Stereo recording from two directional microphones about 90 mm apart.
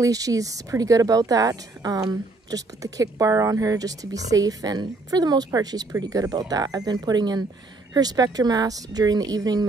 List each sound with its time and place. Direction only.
0.0 s speech: 40° right (ahead or behind)